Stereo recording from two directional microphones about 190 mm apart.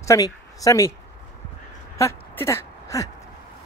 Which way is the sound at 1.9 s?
15° left (ahead or behind).